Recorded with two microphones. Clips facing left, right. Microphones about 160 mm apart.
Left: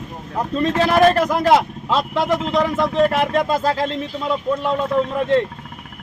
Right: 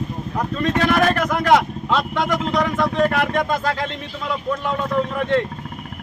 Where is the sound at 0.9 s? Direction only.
30° left (ahead or behind).